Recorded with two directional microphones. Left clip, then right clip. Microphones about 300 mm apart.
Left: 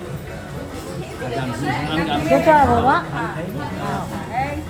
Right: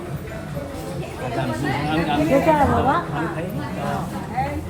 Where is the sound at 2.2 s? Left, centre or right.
Left.